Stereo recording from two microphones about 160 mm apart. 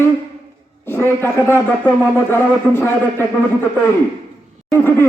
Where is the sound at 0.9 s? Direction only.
15° left (ahead or behind).